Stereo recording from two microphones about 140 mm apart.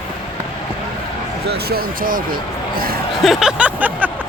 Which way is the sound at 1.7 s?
90° right.